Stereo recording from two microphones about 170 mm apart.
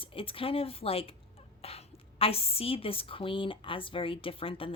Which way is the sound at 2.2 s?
35° left (ahead or behind).